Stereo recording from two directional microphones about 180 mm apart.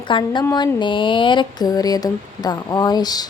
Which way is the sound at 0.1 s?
25° left (ahead or behind).